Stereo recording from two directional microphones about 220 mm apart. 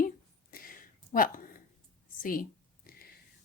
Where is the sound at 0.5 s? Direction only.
40° left (ahead or behind).